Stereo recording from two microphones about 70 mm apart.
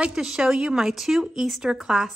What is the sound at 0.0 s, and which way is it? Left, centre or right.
Speech, centre.